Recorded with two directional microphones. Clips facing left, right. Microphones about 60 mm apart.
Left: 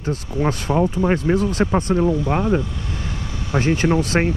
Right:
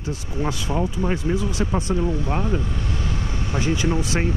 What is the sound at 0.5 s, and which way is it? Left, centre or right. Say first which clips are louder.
Speech: left 6 dB; left.